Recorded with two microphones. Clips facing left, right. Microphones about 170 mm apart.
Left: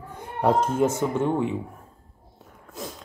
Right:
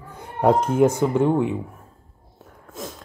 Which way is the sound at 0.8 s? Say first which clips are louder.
Right 5 dB; 15° right (ahead or behind).